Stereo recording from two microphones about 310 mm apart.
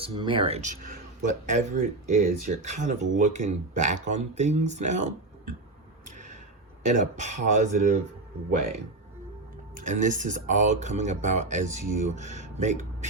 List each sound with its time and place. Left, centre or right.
0.0 s speech: centre
6.1 s a sound: right
6.8 s speech: right
9.7 s speech: right